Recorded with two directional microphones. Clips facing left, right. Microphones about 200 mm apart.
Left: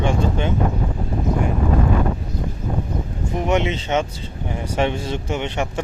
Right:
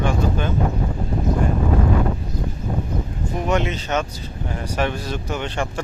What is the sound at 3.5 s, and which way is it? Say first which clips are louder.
Speech: left 2 dB; 20° left (ahead or behind).